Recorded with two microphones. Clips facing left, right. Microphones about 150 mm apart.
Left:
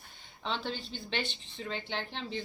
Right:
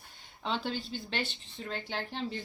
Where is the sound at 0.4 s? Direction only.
10° right (ahead or behind).